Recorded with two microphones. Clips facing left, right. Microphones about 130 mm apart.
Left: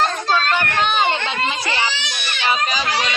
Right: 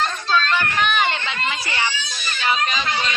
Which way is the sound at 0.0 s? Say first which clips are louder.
Left 2 dB; 40° left (ahead or behind).